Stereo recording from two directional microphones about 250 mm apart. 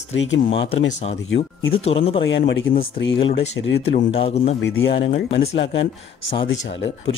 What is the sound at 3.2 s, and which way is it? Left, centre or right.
Speech, left.